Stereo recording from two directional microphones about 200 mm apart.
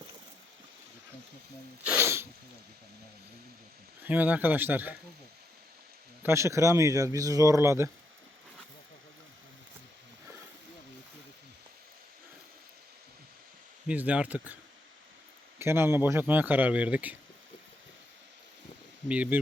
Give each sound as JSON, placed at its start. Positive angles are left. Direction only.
{"t": 1.9, "sound": "sneeze", "side_deg": -15}
{"t": 4.0, "sound": "a man's voice", "side_deg": -10}
{"t": 6.2, "sound": "a man's voice", "side_deg": -15}
{"t": 13.8, "sound": "a man's voice", "side_deg": -5}
{"t": 19.0, "sound": "a man's voice", "side_deg": -5}